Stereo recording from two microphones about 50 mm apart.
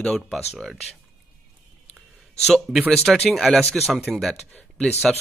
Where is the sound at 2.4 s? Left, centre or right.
Centre.